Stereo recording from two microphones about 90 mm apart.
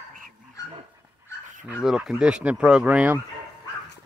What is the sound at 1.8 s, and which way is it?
Speech, 5° right (ahead or behind).